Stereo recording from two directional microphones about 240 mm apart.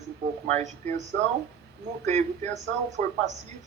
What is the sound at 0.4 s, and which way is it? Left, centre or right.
Speech, right.